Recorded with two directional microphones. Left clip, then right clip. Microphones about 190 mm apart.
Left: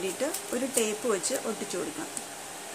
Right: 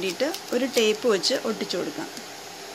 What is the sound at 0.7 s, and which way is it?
Speech, 35° right (ahead or behind).